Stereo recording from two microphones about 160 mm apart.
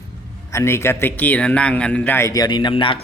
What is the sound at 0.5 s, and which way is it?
Speech, 15° left (ahead or behind).